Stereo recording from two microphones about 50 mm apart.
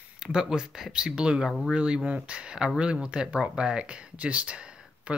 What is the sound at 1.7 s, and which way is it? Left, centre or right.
Speech, centre.